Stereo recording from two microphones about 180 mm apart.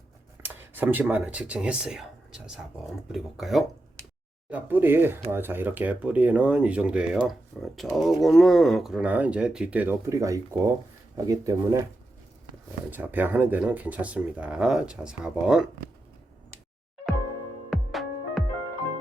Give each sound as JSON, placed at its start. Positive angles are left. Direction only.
{"t": 0.7, "sound": "speech", "side_deg": -10}
{"t": 12.9, "sound": "speech", "side_deg": -10}
{"t": 17.7, "sound": "music", "side_deg": 0}